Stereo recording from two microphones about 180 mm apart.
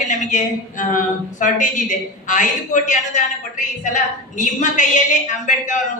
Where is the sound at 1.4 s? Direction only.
45° left (ahead or behind).